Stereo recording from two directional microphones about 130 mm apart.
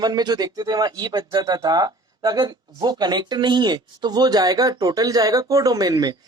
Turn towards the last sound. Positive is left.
turn(degrees=-30)  # may be behind; listen again after turning